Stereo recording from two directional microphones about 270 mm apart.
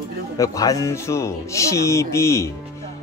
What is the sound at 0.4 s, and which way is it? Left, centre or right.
A man's voice, centre.